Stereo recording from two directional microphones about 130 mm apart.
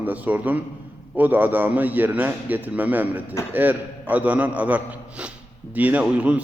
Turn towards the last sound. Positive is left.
turn(degrees=-10)  # may be behind; listen again after turning